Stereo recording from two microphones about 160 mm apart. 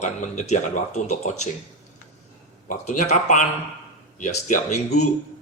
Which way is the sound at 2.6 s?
50° left (ahead or behind).